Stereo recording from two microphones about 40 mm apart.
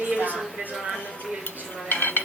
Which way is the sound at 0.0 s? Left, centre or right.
Right.